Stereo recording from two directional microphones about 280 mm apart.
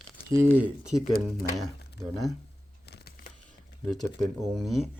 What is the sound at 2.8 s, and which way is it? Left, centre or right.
Crumpling, left.